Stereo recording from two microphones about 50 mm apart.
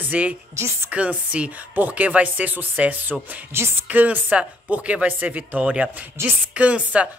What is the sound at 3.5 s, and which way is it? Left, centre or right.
Speech, right.